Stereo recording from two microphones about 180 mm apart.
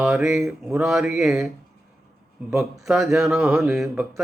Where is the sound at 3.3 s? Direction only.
5° right (ahead or behind).